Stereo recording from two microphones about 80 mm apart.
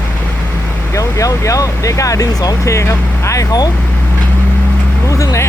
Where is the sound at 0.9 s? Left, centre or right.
Left.